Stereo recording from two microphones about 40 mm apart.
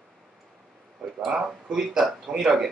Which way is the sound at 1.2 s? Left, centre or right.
Centre.